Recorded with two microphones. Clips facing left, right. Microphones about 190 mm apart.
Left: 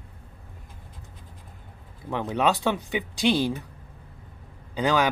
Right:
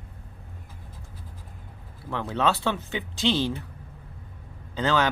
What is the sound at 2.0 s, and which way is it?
Speech, 15° left (ahead or behind).